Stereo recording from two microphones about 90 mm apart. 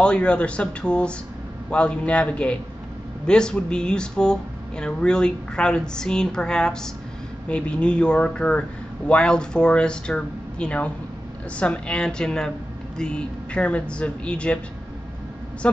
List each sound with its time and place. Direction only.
0.0 s speech: 10° left (ahead or behind)
15.6 s speech: 15° left (ahead or behind)